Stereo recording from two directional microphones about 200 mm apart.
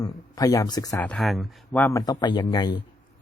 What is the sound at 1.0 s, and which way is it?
Speech, centre (ahead or behind).